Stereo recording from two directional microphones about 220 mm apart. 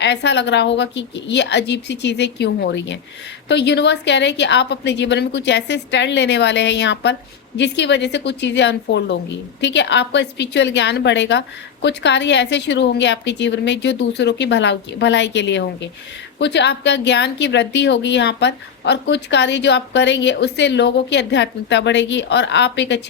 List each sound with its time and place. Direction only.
0.0 s a woman's voice: 50° left (ahead or behind)